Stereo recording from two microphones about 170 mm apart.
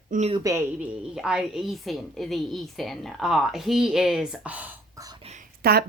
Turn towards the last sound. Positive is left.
turn(degrees=-65)  # may be behind; listen again after turning